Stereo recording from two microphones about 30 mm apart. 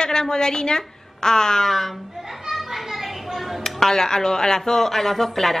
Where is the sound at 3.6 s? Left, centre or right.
Centre.